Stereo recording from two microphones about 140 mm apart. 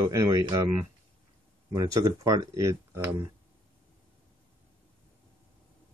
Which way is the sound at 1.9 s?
25° right (ahead or behind).